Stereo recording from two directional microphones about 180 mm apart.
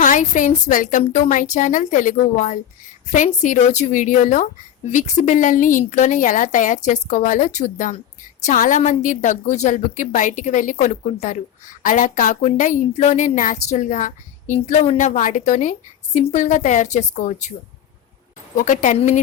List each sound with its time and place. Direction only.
0.0 s a woman's voice: 45° left (ahead or behind)
18.5 s a woman's voice: 45° left (ahead or behind)